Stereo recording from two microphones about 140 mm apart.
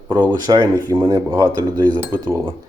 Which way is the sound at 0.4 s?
30° right (ahead or behind).